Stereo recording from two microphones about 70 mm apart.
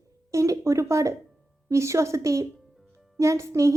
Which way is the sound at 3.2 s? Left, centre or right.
Right.